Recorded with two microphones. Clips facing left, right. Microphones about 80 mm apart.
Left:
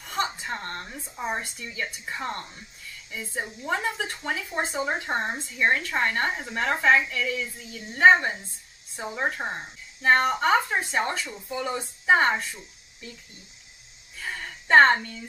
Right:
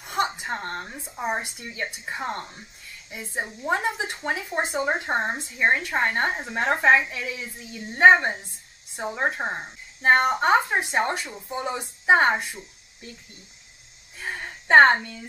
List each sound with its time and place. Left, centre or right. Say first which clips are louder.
0.0 s a woman's voice: right 3 dB; centre
14.2 s a sound: right 2 dB; right
14.7 s speech: right 2 dB; centre